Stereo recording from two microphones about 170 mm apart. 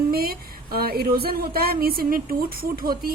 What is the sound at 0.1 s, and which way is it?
A woman's voice, 65° right (ahead or behind).